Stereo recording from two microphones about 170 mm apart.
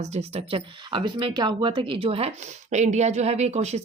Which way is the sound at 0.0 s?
40° right (ahead or behind).